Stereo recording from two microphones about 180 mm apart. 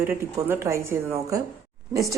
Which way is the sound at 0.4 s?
15° right (ahead or behind).